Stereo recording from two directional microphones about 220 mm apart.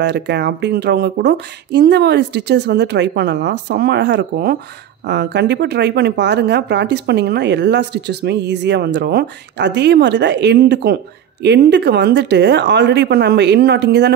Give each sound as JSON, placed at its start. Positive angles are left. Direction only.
{"t": 0.0, "sound": "speech", "side_deg": -50}